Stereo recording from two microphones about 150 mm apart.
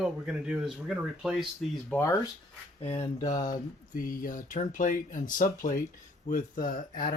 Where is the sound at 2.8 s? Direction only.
45° left (ahead or behind).